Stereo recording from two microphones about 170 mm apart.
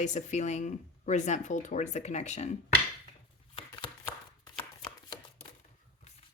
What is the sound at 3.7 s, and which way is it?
Shuffling cards, 25° left (ahead or behind).